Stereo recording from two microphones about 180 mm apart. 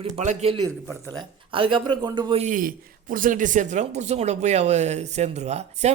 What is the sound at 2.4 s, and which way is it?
A man's voice, 45° right (ahead or behind).